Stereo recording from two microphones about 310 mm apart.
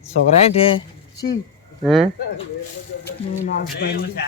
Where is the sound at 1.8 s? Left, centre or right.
Centre.